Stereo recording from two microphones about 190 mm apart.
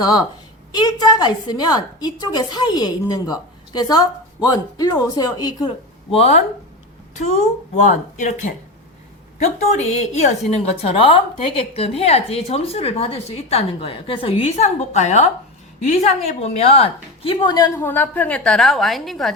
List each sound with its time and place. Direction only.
0.0 s a woman's voice: 20° left (ahead or behind)
6.1 s a woman's voice: 30° left (ahead or behind)
9.9 s a woman's voice: 35° left (ahead or behind)
16.4 s a woman's voice: 30° left (ahead or behind); by 19.3 s centre (ahead or behind)